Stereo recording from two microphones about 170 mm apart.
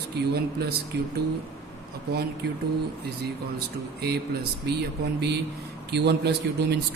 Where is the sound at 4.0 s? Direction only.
65° right (ahead or behind).